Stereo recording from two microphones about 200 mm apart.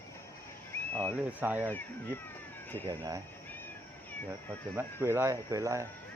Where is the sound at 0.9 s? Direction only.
10° left (ahead or behind).